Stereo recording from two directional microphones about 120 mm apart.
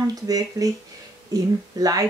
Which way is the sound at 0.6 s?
30° right (ahead or behind).